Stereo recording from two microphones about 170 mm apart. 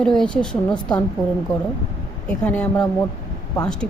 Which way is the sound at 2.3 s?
10° left (ahead or behind).